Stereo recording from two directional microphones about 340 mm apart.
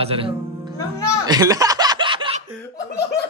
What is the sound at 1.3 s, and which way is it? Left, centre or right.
Chuckle, centre.